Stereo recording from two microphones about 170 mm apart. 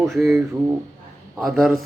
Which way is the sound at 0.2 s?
15° right (ahead or behind).